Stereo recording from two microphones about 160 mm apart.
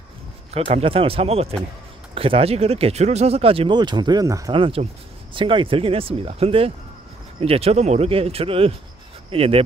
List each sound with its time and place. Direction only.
0.5 s speech: 40° right (ahead or behind); by 4.5 s 20° right (ahead or behind)
4.5 s speech: 35° right (ahead or behind)